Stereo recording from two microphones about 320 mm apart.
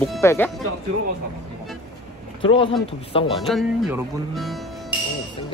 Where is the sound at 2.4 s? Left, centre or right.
Centre.